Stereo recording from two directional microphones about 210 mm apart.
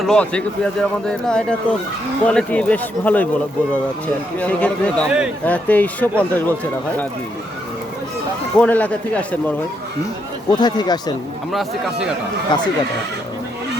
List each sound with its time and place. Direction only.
0.0 s speech: 5° left (ahead or behind)
4.4 s speech: 5° left (ahead or behind)
8.5 s speech: 5° left (ahead or behind)
10.5 s speech: 20° left (ahead or behind)
11.5 s speech: 5° right (ahead or behind)
12.5 s speech: 20° left (ahead or behind)